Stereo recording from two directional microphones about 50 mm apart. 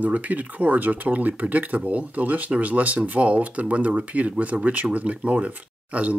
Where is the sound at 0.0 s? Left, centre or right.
Right.